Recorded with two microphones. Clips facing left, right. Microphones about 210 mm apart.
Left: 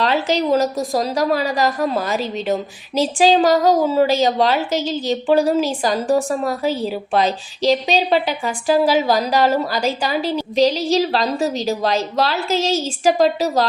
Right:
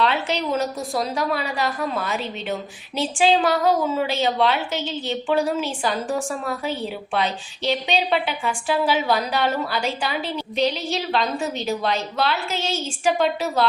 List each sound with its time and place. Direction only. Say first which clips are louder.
0.0 s a woman's voice: left 4 dB; 40° left (ahead or behind)